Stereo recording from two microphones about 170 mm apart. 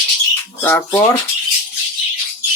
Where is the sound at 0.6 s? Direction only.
10° left (ahead or behind).